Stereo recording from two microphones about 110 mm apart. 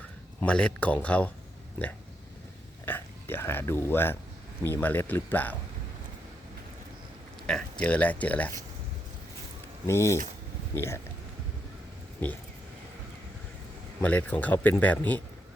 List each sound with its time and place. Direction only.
0.3 s speech: 10° left (ahead or behind)
2.8 s speech: 20° left (ahead or behind)
7.4 s speech: 10° left (ahead or behind)
9.8 s speech: 25° left (ahead or behind)
12.2 s speech: 15° left (ahead or behind)
14.0 s speech: 15° left (ahead or behind)